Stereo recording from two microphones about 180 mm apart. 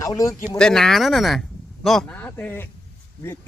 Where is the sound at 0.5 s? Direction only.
5° left (ahead or behind).